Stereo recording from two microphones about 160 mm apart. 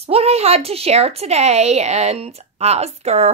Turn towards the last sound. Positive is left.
turn(degrees=-45)  # may be behind; listen again after turning